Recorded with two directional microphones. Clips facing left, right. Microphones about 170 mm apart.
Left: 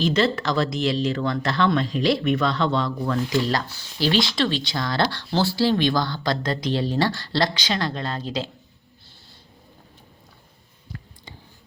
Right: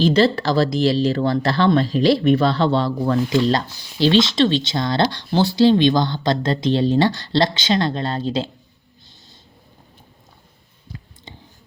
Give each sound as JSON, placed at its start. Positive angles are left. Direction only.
{"t": 0.0, "sound": "speech", "side_deg": -35}
{"t": 11.3, "sound": "clicking", "side_deg": -25}